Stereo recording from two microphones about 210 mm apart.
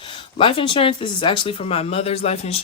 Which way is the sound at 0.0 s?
25° left (ahead or behind).